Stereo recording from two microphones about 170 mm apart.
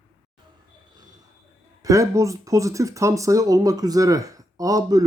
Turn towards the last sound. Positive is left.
turn(degrees=-20)  # may be behind; listen again after turning